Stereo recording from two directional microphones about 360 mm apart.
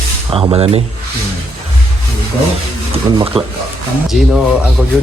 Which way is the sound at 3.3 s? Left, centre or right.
Centre.